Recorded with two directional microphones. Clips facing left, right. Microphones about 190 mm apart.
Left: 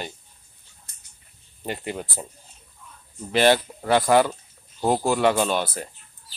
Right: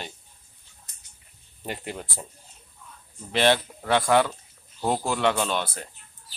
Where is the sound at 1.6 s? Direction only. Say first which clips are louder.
Left 4 dB; centre (ahead or behind).